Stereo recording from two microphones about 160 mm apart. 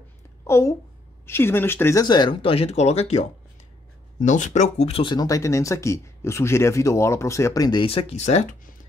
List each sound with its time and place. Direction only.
0.5 s a woman's voice: 15° left (ahead or behind)
2.0 s speech: 30° left (ahead or behind)
7.8 s speech: 35° left (ahead or behind)